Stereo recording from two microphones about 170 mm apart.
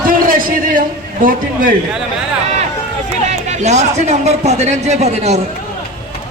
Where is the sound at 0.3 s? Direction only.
55° right (ahead or behind).